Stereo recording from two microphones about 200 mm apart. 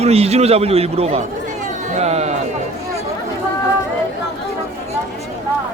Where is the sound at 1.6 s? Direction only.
35° right (ahead or behind).